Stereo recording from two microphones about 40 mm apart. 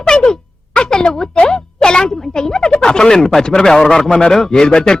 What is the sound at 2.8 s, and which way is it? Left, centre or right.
A man's voice, centre.